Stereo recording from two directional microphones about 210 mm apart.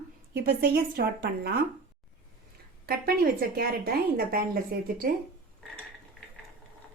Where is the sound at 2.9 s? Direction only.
45° right (ahead or behind).